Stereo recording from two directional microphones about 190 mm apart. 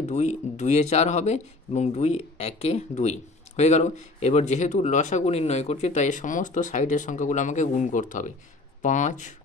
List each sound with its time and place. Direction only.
0.0 s speech: 40° left (ahead or behind)